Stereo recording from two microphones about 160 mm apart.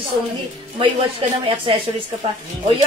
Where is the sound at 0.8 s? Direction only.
30° right (ahead or behind).